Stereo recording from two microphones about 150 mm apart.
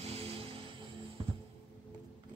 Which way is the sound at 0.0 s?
45° right (ahead or behind).